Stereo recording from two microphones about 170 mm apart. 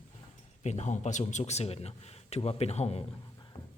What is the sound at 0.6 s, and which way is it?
A man's voice, 40° left (ahead or behind).